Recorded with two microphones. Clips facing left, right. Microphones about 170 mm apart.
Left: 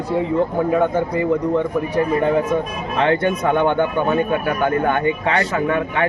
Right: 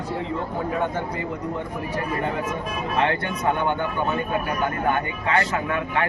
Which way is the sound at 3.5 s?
70° left (ahead or behind).